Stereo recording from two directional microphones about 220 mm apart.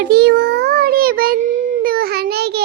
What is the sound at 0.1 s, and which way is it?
Child singing, 45° right (ahead or behind).